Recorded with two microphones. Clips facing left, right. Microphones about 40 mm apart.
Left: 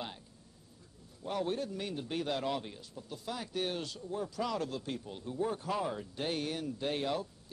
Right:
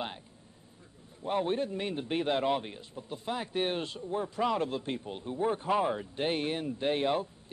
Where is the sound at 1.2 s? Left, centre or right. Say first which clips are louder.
Right 5 dB; right.